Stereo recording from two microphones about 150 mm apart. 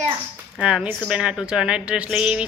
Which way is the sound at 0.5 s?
5° right (ahead or behind).